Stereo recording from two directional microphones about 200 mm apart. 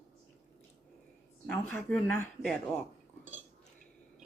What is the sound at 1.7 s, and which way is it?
Speech, 5° left (ahead or behind).